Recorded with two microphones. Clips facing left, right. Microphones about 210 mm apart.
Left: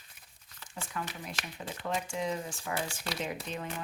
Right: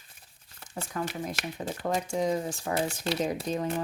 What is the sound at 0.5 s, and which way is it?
Speech, 45° right (ahead or behind).